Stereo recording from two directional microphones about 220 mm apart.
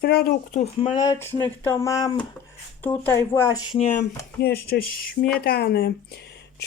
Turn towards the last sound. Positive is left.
turn(degrees=45)  # may be behind; listen again after turning